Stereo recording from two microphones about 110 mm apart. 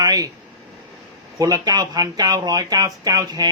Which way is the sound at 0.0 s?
35° right (ahead or behind).